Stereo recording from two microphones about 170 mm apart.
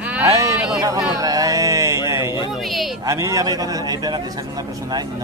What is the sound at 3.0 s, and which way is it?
A man's voice, 20° right (ahead or behind).